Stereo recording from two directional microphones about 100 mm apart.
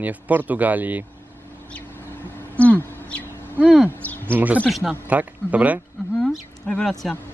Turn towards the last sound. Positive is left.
turn(degrees=5)  # may be behind; listen again after turning